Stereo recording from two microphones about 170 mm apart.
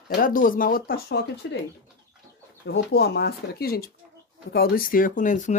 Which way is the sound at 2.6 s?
75° left (ahead or behind).